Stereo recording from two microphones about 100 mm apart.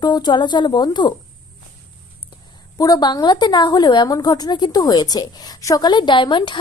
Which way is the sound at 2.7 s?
40° left (ahead or behind).